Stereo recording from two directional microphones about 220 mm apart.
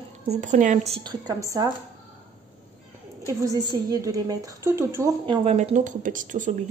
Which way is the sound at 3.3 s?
15° right (ahead or behind).